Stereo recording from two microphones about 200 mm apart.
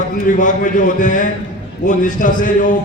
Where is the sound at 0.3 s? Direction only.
40° left (ahead or behind).